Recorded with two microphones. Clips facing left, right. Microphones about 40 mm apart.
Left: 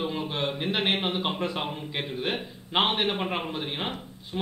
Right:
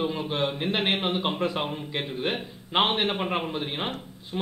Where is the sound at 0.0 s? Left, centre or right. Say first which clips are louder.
Right 2 dB; centre.